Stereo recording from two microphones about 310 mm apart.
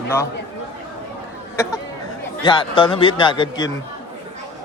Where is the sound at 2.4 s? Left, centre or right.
Centre.